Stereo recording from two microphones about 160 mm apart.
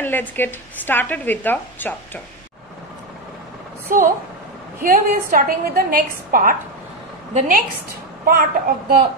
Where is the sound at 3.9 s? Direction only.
55° right (ahead or behind).